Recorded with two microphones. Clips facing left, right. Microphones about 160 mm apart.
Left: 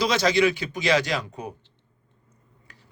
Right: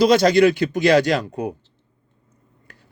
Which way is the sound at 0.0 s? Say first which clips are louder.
Right 7 dB; 55° right (ahead or behind).